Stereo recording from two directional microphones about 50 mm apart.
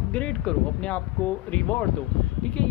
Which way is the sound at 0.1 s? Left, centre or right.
Centre.